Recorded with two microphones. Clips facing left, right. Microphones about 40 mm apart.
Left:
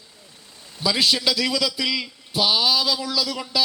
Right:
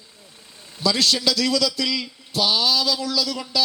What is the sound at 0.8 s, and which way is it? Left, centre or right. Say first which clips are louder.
A man's voice: even; centre.